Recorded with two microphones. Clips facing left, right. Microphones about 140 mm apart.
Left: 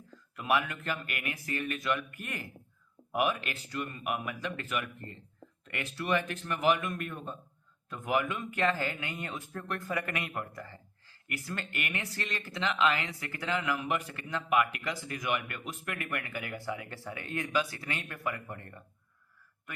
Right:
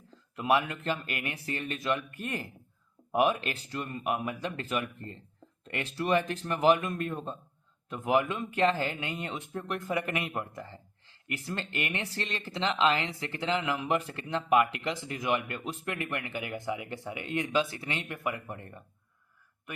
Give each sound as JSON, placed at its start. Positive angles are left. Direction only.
{"t": 0.1, "sound": "speech", "side_deg": -30}
{"t": 13.8, "sound": "speech", "side_deg": -30}